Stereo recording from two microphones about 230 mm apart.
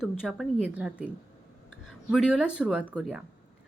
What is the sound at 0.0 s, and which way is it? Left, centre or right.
A woman's voice, centre.